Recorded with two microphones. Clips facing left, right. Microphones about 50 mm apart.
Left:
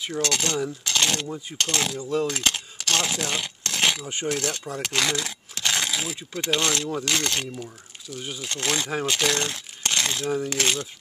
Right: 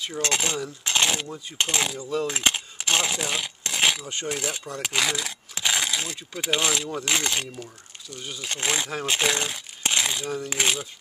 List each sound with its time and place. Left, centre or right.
0.2 s speech: centre
0.8 s dishes: centre
1.1 s speech: centre
2.2 s keys jangling: centre
3.1 s a sound: centre
4.3 s speech: centre
7.5 s speech: centre
8.4 s speech: centre
9.4 s a sound: centre
10.5 s speech: centre